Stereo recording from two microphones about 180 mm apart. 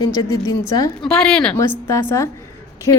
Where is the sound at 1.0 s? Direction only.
5° left (ahead or behind).